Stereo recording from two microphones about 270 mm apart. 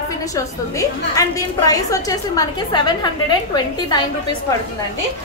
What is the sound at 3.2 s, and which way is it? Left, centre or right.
Speech, centre.